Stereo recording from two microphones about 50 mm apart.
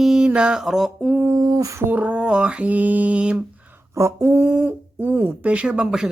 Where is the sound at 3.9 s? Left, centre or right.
Right.